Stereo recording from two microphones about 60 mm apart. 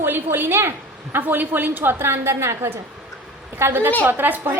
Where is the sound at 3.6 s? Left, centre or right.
Right.